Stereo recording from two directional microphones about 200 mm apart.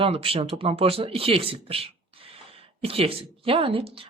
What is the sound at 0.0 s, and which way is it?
Speech, 30° right (ahead or behind).